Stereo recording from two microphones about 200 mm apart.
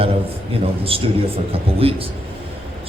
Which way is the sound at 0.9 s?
30° right (ahead or behind).